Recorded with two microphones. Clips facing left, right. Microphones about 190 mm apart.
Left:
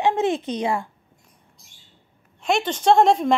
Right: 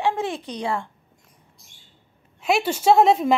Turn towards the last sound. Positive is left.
turn(degrees=-5)  # may be behind; listen again after turning